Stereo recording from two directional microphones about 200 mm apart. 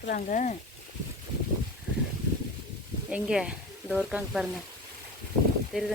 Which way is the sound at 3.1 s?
5° right (ahead or behind).